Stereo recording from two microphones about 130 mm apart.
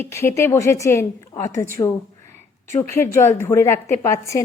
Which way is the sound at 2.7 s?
25° left (ahead or behind).